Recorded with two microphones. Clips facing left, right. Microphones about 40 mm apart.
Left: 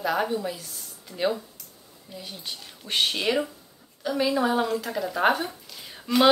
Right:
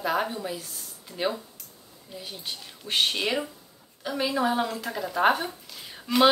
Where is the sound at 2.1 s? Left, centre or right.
Centre.